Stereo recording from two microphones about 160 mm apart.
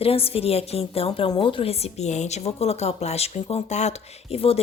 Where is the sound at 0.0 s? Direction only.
35° left (ahead or behind).